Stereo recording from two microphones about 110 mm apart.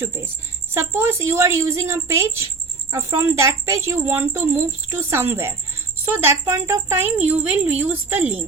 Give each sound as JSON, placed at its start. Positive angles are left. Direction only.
{"t": 0.7, "sound": "a woman's voice", "side_deg": -20}